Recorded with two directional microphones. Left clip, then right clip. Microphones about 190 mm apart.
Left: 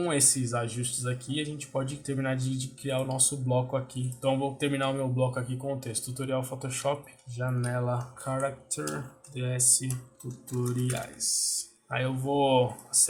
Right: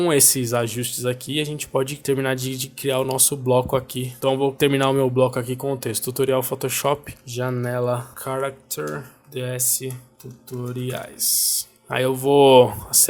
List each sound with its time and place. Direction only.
0.0 s speech: 45° right (ahead or behind); by 9.9 s 30° right (ahead or behind)
10.9 s speech: 35° right (ahead or behind)